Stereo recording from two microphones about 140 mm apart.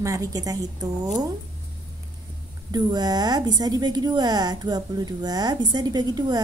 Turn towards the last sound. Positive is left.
turn(degrees=-30)  # may be behind; listen again after turning